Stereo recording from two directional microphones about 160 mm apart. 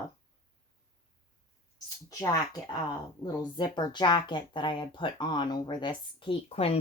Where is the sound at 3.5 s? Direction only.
25° left (ahead or behind).